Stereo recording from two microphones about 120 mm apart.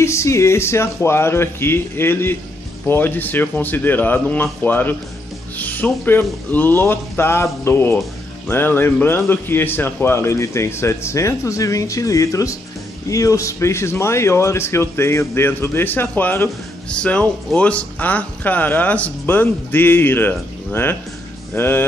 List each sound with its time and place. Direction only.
0.0 s speech: 25° left (ahead or behind)